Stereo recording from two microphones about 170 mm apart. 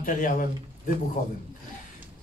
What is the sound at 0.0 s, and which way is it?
Speech, 50° left (ahead or behind).